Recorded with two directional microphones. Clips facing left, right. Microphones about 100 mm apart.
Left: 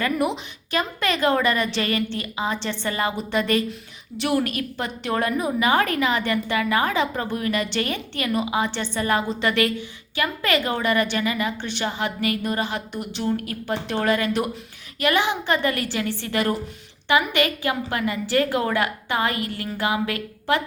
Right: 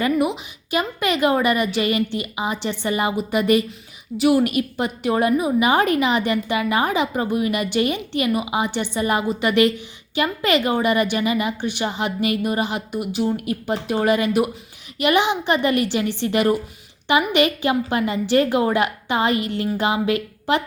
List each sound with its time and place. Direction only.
0.2 s a woman's voice: 10° right (ahead or behind)